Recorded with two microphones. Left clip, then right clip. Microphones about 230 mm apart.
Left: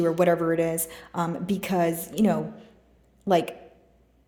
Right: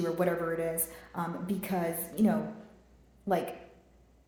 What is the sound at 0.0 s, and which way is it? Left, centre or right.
A woman's voice, left.